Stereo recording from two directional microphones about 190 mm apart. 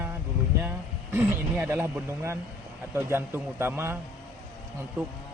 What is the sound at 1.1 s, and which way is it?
Speech, 10° right (ahead or behind).